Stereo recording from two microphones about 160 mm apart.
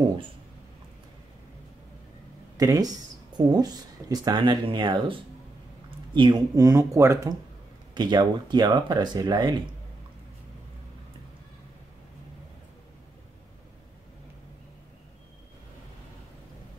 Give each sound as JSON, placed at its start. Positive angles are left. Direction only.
{"t": 2.5, "sound": "speech", "side_deg": -20}
{"t": 6.1, "sound": "speech", "side_deg": -30}